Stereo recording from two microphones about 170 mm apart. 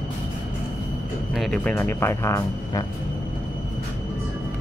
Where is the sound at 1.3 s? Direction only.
5° left (ahead or behind).